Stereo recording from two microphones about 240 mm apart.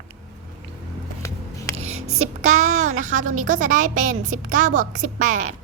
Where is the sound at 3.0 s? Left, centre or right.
Right.